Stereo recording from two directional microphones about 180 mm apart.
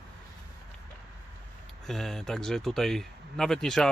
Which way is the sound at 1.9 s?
Centre (ahead or behind).